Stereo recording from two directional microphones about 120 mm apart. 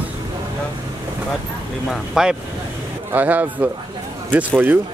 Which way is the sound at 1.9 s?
5° right (ahead or behind).